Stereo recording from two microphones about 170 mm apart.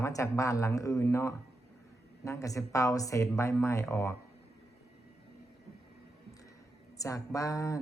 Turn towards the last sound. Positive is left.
turn(degrees=20)  # may be behind; listen again after turning